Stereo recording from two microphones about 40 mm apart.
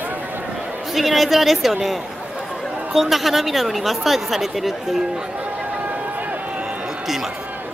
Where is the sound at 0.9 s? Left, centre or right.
Centre.